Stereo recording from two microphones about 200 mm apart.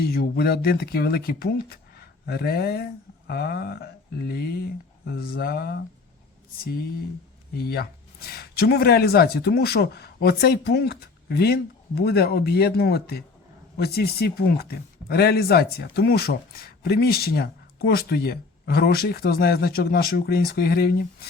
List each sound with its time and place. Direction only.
0.0 s speech: 50° left (ahead or behind)
7.5 s speech: 50° left (ahead or behind)